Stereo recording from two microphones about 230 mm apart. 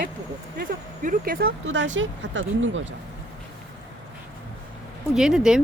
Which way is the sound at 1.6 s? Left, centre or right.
Right.